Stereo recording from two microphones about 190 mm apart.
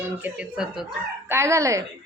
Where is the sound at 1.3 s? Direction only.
15° right (ahead or behind).